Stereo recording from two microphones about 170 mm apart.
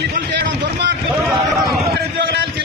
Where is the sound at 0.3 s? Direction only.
90° right.